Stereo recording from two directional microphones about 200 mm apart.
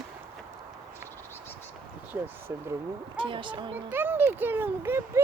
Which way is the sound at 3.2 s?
25° right (ahead or behind).